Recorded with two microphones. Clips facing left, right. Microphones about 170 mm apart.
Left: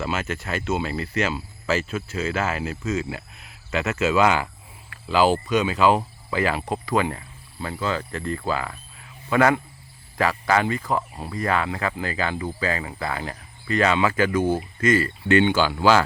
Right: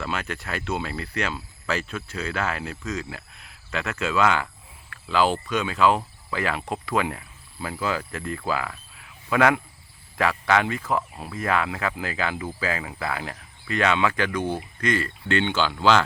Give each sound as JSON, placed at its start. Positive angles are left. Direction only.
{"t": 0.0, "sound": "speech", "side_deg": 5}